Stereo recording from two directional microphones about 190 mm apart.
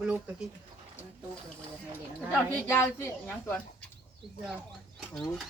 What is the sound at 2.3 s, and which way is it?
A woman's voice, 10° left (ahead or behind).